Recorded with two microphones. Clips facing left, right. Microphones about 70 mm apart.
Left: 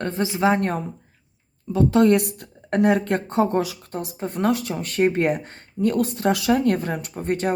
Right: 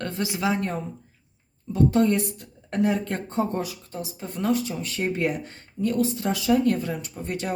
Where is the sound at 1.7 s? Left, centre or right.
Left.